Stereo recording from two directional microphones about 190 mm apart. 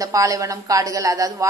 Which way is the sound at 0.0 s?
15° right (ahead or behind).